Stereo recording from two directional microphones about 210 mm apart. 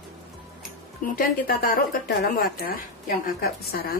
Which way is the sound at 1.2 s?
45° left (ahead or behind).